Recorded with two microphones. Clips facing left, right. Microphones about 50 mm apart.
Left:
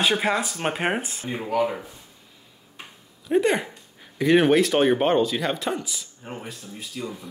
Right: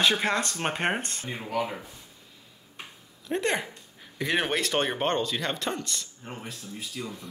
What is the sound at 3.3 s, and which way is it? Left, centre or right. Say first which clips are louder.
Speech: left 7 dB; centre.